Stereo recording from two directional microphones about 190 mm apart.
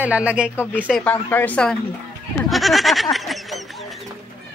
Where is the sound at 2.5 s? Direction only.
Centre (ahead or behind).